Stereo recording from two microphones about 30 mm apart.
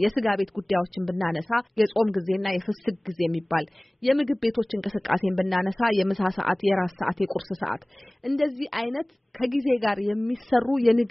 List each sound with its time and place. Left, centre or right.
0.0 s speech: centre